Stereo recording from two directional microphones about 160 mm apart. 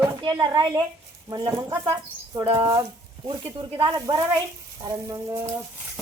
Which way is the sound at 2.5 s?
35° right (ahead or behind).